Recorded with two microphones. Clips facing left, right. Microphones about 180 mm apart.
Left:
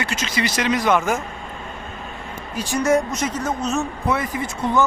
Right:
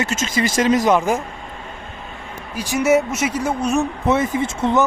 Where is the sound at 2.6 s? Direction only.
10° right (ahead or behind).